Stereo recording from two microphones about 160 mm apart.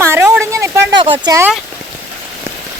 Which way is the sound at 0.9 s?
30° right (ahead or behind).